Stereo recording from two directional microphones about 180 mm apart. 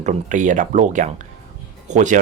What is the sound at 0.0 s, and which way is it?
Speech, 40° right (ahead or behind).